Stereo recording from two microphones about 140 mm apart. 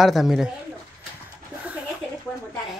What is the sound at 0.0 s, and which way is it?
Speech, centre (ahead or behind).